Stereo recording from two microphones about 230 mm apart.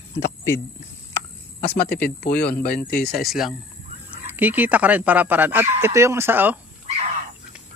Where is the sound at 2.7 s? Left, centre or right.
Left.